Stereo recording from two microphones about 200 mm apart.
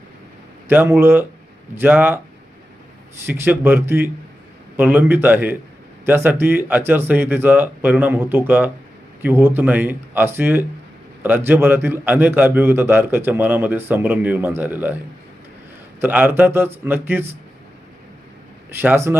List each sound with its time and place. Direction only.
0.7 s a man's voice: 10° right (ahead or behind)
3.2 s a man's voice: 10° right (ahead or behind)
16.0 s a man's voice: 10° right (ahead or behind)
18.7 s a man's voice: 10° right (ahead or behind)